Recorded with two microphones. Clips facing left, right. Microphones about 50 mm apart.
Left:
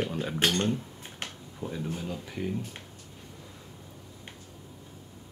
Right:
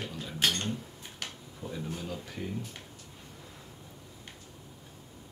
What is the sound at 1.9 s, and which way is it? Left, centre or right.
Speech, centre.